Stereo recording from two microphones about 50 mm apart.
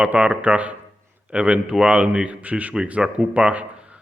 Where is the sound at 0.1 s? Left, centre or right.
Right.